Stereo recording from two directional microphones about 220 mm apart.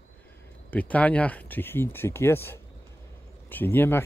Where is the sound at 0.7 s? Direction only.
5° left (ahead or behind).